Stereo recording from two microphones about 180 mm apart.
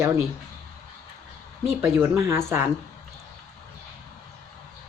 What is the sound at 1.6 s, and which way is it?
Speech, 15° right (ahead or behind).